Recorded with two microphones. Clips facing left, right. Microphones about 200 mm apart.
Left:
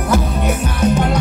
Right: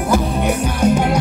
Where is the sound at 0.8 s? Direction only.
10° right (ahead or behind).